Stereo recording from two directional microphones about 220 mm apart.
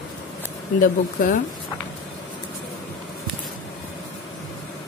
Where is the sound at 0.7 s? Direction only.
40° left (ahead or behind).